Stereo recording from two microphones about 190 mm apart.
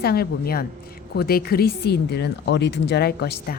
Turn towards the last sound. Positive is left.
turn(degrees=55)  # may be behind; listen again after turning